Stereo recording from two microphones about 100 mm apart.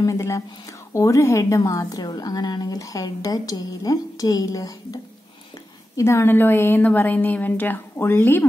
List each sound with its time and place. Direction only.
0.0 s a woman's voice: 30° left (ahead or behind)